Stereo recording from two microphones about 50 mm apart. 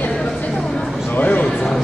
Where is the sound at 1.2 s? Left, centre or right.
Left.